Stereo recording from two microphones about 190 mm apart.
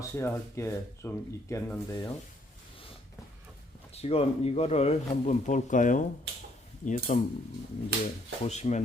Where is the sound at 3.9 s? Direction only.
30° left (ahead or behind).